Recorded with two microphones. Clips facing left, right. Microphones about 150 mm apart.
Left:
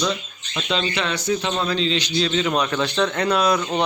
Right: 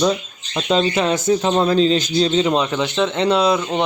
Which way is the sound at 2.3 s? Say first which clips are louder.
Right 4 dB; 30° right (ahead or behind).